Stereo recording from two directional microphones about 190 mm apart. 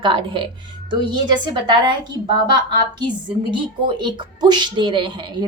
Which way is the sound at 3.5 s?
25° right (ahead or behind).